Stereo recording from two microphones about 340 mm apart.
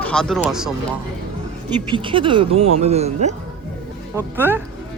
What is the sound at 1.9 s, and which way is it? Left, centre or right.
Speech, centre.